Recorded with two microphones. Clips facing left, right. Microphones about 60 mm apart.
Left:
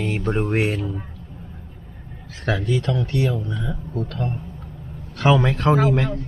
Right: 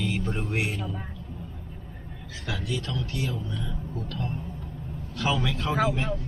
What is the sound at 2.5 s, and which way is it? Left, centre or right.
A man's voice, left.